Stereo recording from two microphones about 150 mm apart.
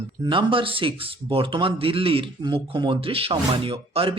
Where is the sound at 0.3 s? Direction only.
35° right (ahead or behind).